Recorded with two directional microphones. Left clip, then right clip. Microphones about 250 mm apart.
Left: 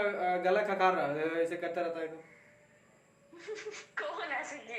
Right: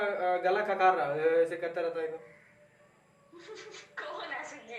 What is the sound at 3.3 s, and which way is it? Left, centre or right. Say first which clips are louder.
Chuckle: left 4 dB; left.